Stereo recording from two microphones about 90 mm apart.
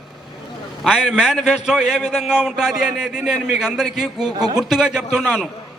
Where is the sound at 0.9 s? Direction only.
5° right (ahead or behind).